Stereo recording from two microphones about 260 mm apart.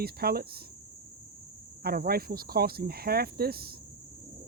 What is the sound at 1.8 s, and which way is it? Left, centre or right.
Speech, right.